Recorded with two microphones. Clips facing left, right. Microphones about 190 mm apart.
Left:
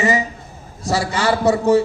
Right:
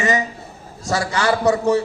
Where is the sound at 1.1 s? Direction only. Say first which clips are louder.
Even; 25° left (ahead or behind).